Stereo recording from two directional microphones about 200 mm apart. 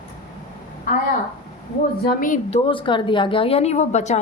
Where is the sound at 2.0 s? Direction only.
40° left (ahead or behind).